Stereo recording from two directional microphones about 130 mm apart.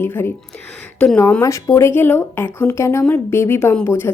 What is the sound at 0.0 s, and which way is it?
Speech, 20° left (ahead or behind).